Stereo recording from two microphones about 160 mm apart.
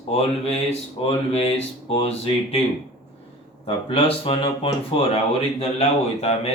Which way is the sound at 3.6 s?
35° left (ahead or behind).